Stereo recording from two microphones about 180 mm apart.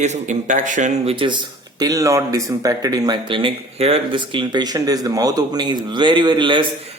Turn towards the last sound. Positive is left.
turn(degrees=-30)  # may be behind; listen again after turning